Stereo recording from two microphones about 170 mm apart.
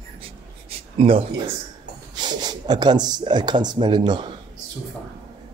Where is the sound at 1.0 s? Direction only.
35° right (ahead or behind).